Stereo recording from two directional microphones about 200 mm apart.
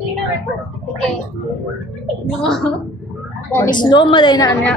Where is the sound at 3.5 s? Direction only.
20° left (ahead or behind).